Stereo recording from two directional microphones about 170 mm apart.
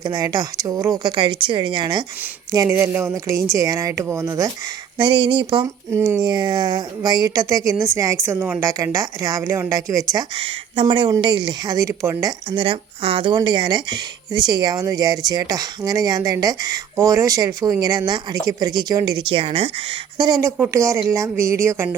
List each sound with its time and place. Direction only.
0.0 s speech: 20° right (ahead or behind)
4.9 s speech: 30° right (ahead or behind)
5.6 s speech: 15° right (ahead or behind); by 19.7 s 35° right (ahead or behind)
20.1 s speech: 25° right (ahead or behind)